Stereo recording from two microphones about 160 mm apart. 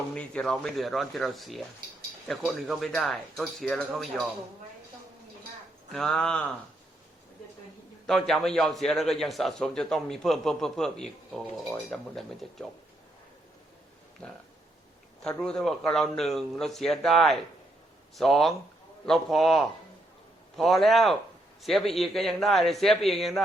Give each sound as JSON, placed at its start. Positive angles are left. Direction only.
{"t": 0.1, "sound": "a man's voice", "side_deg": 5}
{"t": 5.9, "sound": "a man's voice", "side_deg": 5}
{"t": 8.0, "sound": "a man's voice", "side_deg": 0}
{"t": 14.2, "sound": "a man's voice", "side_deg": 5}